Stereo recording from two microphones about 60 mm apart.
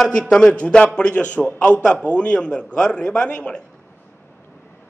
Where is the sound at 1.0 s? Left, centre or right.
Left.